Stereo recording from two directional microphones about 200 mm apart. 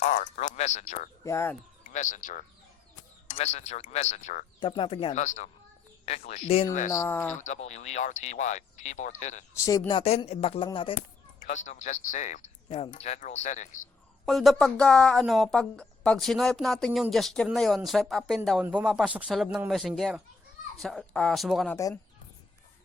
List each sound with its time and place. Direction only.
0.0 s speech: 35° left (ahead or behind)
1.2 s speech: 15° left (ahead or behind)
1.8 s speech: 40° left (ahead or behind)
4.7 s speech: 25° left (ahead or behind)
6.9 s speech: 15° left (ahead or behind)
7.3 s speech: 35° left (ahead or behind)
9.6 s speech: 15° left (ahead or behind)
10.0 s speech: 30° left (ahead or behind)
11.3 s speech: 40° left (ahead or behind)
12.6 s speech: 25° left (ahead or behind)
12.9 s speech: 35° left (ahead or behind)
14.3 s speech: centre (ahead or behind)